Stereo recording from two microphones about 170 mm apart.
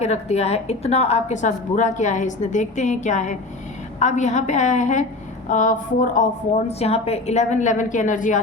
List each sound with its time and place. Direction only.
0.0 s a woman's voice: 40° left (ahead or behind)